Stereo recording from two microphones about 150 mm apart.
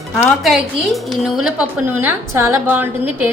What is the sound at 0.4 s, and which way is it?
A woman's voice, centre (ahead or behind).